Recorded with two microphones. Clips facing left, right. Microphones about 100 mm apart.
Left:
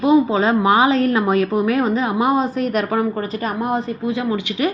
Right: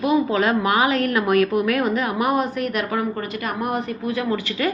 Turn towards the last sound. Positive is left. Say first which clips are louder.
# left 2 dB
turn(degrees=20)  # may be behind; listen again after turning